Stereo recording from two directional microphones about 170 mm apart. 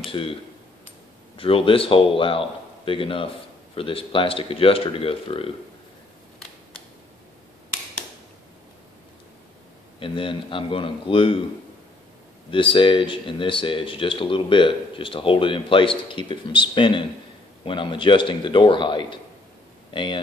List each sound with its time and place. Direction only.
0.1 s a man's voice: 35° left (ahead or behind)
9.9 s a man's voice: 30° left (ahead or behind)
12.4 s speech: 30° left (ahead or behind)